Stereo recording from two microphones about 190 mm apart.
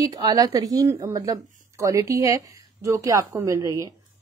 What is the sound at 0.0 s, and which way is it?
A woman's voice, 20° right (ahead or behind).